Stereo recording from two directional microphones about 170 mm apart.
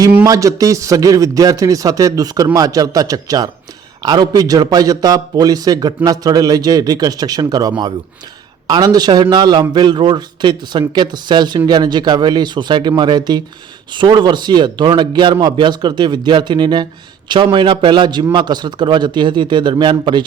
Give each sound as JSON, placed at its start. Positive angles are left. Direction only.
{"t": 0.3, "sound": "a man's voice", "side_deg": -20}